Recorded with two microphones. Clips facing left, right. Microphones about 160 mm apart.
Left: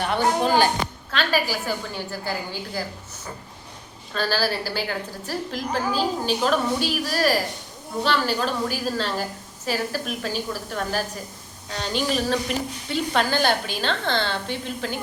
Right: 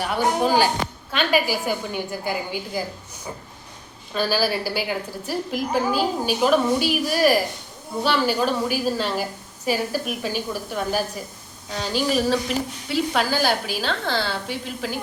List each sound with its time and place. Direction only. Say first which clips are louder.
0.0 s a woman's voice: even; 5° right (ahead or behind)
4.1 s a woman's voice: right 2 dB; 10° right (ahead or behind)